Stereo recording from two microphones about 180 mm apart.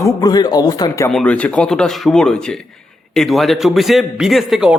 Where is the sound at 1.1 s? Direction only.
5° left (ahead or behind).